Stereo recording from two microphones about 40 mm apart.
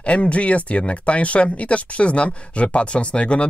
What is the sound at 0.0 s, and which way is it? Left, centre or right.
Speech, left.